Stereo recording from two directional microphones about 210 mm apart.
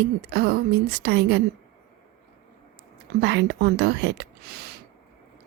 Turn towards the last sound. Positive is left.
turn(degrees=-50)  # may be behind; listen again after turning